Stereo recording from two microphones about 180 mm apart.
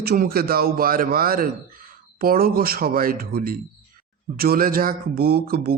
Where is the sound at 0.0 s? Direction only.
55° right (ahead or behind).